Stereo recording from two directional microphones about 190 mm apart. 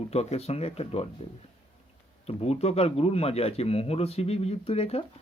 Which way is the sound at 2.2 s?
35° left (ahead or behind).